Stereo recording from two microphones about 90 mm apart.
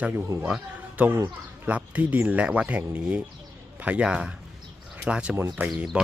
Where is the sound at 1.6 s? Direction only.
15° right (ahead or behind).